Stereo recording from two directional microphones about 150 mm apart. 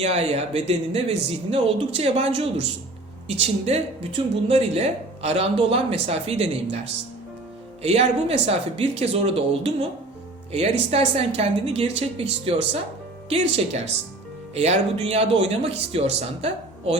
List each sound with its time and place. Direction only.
0.0 s speech: 45° right (ahead or behind)
7.8 s speech: 45° right (ahead or behind)